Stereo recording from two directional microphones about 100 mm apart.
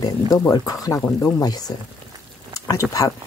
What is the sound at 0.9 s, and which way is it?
Speech, 20° left (ahead or behind).